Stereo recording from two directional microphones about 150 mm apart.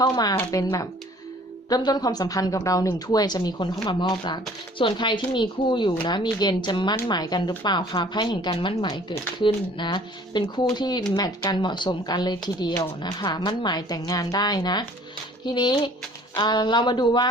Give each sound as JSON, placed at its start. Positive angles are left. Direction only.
{"t": 0.0, "sound": "a woman's voice", "side_deg": 25}